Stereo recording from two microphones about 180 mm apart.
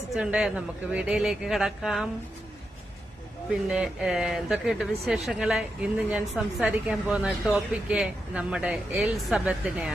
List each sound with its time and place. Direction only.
0.1 s a woman's voice: 5° right (ahead or behind)
3.5 s a woman's voice: 5° right (ahead or behind)